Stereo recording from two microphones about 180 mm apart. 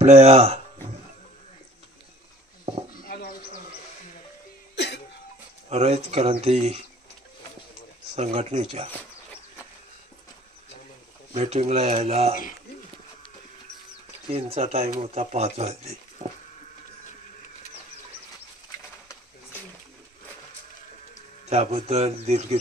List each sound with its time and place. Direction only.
0.0 s speech: 40° right (ahead or behind)
2.7 s a sound: 35° right (ahead or behind)
3.0 s a sound: 50° left (ahead or behind)
4.7 s cough: 70° left (ahead or behind)
5.7 s speech: 35° right (ahead or behind)
8.2 s speech: 35° right (ahead or behind)
11.3 s speech: 35° right (ahead or behind)
14.2 s speech: 35° right (ahead or behind)
21.5 s speech: 35° right (ahead or behind)